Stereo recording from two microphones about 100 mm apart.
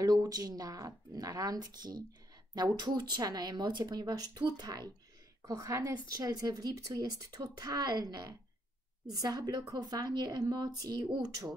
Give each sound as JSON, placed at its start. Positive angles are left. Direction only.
{"t": 0.0, "sound": "speech", "side_deg": -40}